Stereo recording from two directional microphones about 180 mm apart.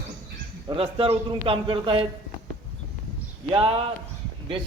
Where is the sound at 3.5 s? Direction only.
30° right (ahead or behind).